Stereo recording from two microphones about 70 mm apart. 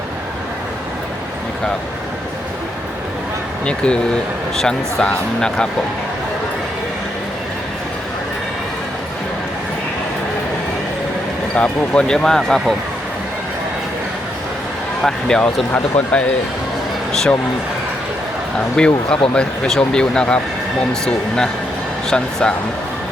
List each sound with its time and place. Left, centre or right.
3.7 s speech: centre
11.5 s speech: centre
15.0 s speech: centre
15.7 s speech: left
17.1 s speech: centre
18.9 s speech: centre